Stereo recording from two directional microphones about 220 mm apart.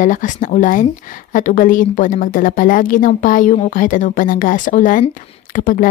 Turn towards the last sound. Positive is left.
turn(degrees=40)  # may be behind; listen again after turning